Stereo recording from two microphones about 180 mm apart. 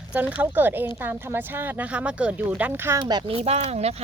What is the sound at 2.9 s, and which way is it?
Speech, 25° right (ahead or behind).